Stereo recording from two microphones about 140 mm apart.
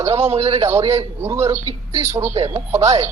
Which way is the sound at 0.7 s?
20° right (ahead or behind).